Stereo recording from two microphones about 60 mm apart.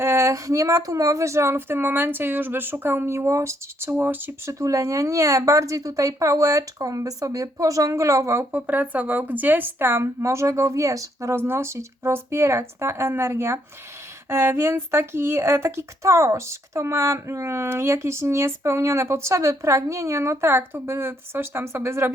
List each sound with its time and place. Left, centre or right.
0.0 s speech: right
4.4 s a woman's voice: right
8.4 s a woman's voice: right
11.3 s speech: right